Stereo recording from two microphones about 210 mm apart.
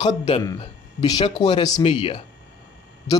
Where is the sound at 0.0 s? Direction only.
20° left (ahead or behind).